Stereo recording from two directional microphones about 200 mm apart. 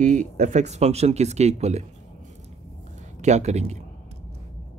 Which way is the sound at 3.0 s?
35° right (ahead or behind).